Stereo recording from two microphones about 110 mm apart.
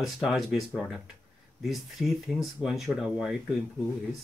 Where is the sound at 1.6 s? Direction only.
Centre (ahead or behind).